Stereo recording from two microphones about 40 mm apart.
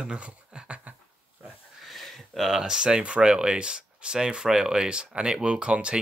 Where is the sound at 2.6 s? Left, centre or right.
Centre.